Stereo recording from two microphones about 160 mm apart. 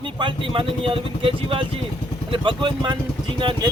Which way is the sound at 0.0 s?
30° right (ahead or behind).